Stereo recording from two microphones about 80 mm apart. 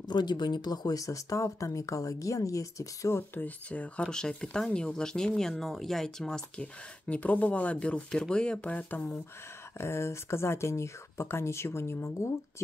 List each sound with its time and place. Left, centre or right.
0.0 s speech: left
3.3 s speech: centre
9.8 s speech: left